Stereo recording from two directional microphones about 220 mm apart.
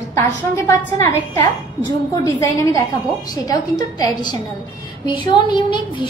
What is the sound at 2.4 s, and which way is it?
Speech, 15° left (ahead or behind).